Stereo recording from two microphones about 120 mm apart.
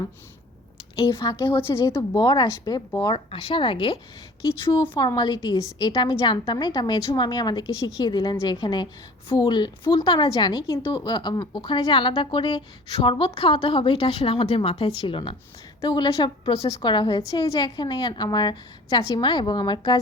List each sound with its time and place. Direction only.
1.1 s a woman's voice: 35° left (ahead or behind)
1.5 s speech: 20° left (ahead or behind); by 2.8 s 35° left (ahead or behind)
3.2 s a woman's voice: 45° left (ahead or behind)